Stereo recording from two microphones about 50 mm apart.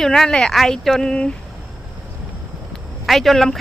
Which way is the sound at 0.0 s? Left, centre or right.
Centre.